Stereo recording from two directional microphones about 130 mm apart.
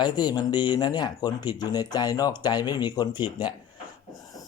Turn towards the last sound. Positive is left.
turn(degrees=35)  # may be behind; listen again after turning